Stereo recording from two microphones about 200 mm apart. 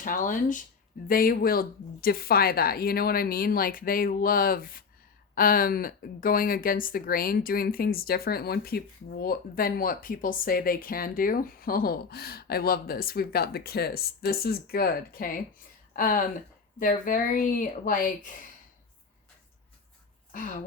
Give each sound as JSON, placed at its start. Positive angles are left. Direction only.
{"t": 0.0, "sound": "speech", "side_deg": 40}
{"t": 20.3, "sound": "speech", "side_deg": 40}